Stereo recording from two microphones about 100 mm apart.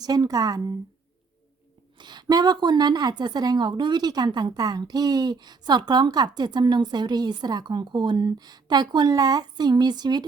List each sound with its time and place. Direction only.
0.0 s speech: 40° right (ahead or behind)
2.0 s a woman's voice: 45° right (ahead or behind)